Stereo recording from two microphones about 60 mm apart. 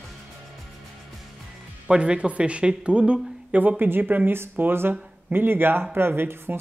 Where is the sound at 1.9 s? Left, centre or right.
Centre.